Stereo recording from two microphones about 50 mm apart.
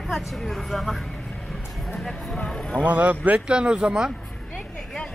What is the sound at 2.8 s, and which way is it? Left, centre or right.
Speech, right.